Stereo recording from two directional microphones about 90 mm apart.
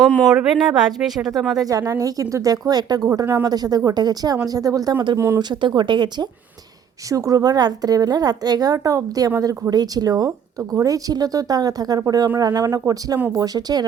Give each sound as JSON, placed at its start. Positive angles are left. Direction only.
{"t": 0.3, "sound": "speech", "side_deg": -5}
{"t": 1.6, "sound": "a woman's voice", "side_deg": -45}
{"t": 3.1, "sound": "speech", "side_deg": -30}
{"t": 3.4, "sound": "a woman's voice", "side_deg": -45}
{"t": 5.1, "sound": "speech", "side_deg": -30}
{"t": 5.4, "sound": "speech", "side_deg": -55}
{"t": 7.1, "sound": "a woman's voice", "side_deg": -40}